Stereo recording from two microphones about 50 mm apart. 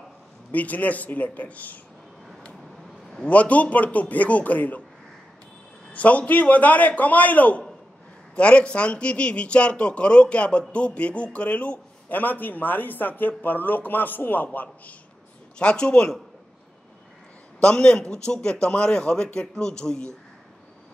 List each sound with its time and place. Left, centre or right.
0.5 s a man's voice: left
3.3 s a man's voice: left
5.9 s a man's voice: left
15.6 s speech: left
17.6 s a man's voice: centre